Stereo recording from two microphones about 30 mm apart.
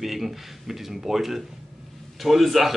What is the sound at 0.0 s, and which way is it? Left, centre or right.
A man's voice, centre.